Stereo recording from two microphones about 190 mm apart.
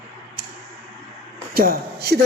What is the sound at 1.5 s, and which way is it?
Speech, 50° right (ahead or behind).